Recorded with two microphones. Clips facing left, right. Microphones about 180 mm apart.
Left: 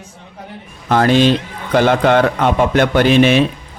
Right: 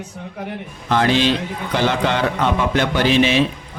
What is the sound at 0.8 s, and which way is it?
Speech, 50° left (ahead or behind).